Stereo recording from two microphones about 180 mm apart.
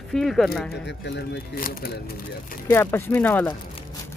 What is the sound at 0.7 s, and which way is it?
Speech, 75° left (ahead or behind).